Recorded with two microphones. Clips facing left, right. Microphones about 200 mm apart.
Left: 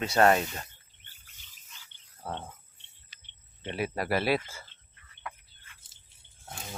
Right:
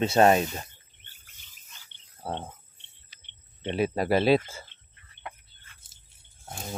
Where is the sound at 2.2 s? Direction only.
35° right (ahead or behind).